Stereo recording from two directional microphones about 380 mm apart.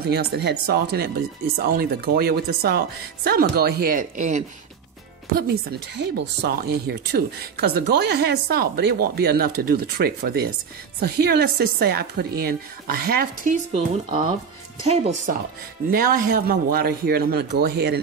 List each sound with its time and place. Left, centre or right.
0.0 s speech: right
7.3 s a woman's voice: right
7.7 s speech: right